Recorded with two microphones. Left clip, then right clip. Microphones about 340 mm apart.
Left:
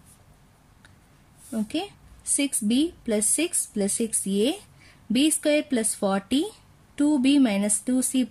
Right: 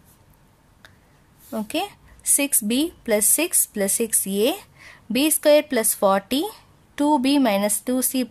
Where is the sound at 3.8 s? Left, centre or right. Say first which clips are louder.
Right 5 dB; right.